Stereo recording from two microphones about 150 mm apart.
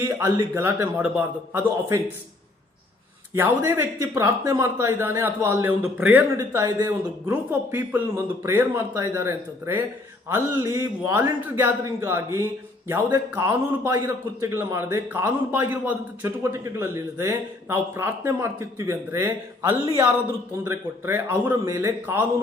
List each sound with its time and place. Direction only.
0.0 s a man's voice: 20° right (ahead or behind)
3.3 s a man's voice: 15° right (ahead or behind)